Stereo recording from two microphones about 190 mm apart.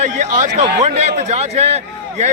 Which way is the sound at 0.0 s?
35° right (ahead or behind).